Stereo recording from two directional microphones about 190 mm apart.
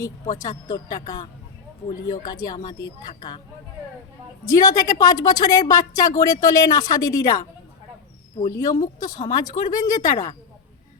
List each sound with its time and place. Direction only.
0.4 s a woman's voice: 20° left (ahead or behind)
4.4 s a woman's voice: 20° left (ahead or behind)